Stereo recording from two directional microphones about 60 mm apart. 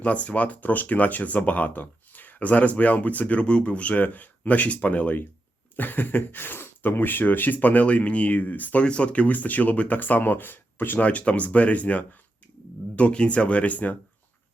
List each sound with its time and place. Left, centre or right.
0.0 s speech: left
11.0 s speech: left